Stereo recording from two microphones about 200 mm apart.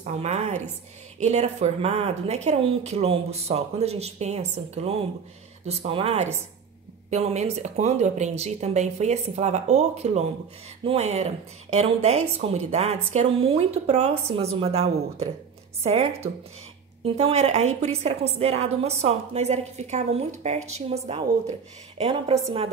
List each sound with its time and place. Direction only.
0.0 s a woman's voice: 35° right (ahead or behind)